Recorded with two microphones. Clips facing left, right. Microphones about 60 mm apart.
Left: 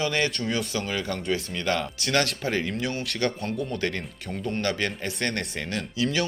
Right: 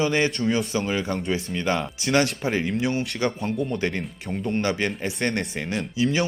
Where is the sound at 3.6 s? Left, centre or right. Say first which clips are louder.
Right 3 dB; centre.